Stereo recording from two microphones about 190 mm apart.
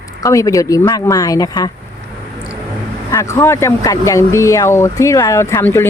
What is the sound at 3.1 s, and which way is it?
Speech, 15° left (ahead or behind).